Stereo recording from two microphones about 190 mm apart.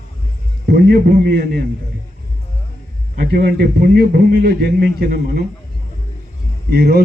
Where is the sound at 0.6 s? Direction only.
55° right (ahead or behind).